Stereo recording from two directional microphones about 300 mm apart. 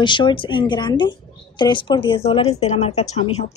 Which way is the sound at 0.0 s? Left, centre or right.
Centre.